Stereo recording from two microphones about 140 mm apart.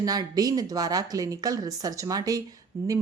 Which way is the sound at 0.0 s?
25° right (ahead or behind).